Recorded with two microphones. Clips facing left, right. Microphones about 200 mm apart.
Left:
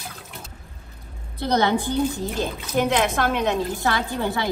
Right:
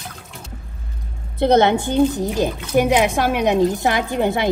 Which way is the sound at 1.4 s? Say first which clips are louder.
Right 6 dB; 25° right (ahead or behind).